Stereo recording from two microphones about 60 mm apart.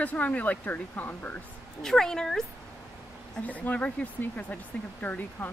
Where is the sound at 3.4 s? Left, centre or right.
Left.